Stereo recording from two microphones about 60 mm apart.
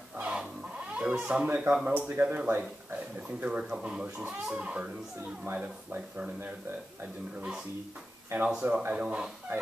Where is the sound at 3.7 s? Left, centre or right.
Centre.